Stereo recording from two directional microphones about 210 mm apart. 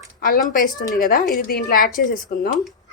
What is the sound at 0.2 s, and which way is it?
Speech, 45° left (ahead or behind).